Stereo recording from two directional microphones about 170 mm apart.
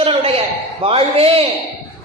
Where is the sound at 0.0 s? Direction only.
35° right (ahead or behind).